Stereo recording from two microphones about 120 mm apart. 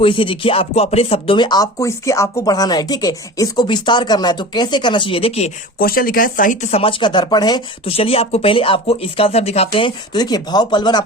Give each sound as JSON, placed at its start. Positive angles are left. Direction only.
{"t": 0.0, "sound": "speech", "side_deg": 45}
{"t": 1.4, "sound": "speech", "side_deg": 35}
{"t": 6.5, "sound": "speech", "side_deg": 75}
{"t": 7.0, "sound": "speech", "side_deg": 40}
{"t": 7.9, "sound": "speech", "side_deg": 55}